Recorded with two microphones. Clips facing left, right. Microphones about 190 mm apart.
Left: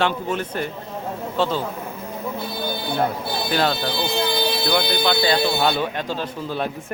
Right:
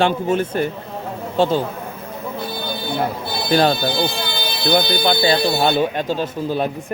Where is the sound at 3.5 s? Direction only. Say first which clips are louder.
Right 6 dB; 30° right (ahead or behind).